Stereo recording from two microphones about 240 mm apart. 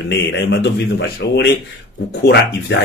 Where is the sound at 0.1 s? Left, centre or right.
Left.